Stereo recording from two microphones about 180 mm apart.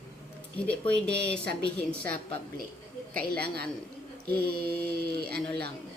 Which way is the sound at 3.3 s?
60° right (ahead or behind).